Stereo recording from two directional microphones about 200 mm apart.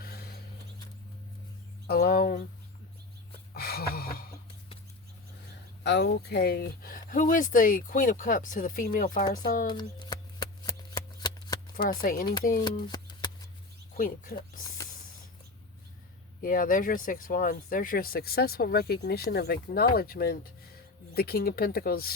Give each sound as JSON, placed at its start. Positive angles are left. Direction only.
{"t": 0.0, "sound": "a sound", "side_deg": 50}
{"t": 1.9, "sound": "speech", "side_deg": 50}
{"t": 3.5, "sound": "a sound", "side_deg": 50}
{"t": 5.8, "sound": "speech", "side_deg": 60}
{"t": 9.6, "sound": "shuffling cards", "side_deg": 20}
{"t": 11.8, "sound": "speech", "side_deg": 45}
{"t": 12.6, "sound": "a sound", "side_deg": 20}
{"t": 13.9, "sound": "speech", "side_deg": 45}
{"t": 16.4, "sound": "speech", "side_deg": 45}